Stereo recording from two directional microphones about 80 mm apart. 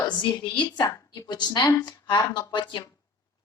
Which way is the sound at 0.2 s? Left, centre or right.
Left.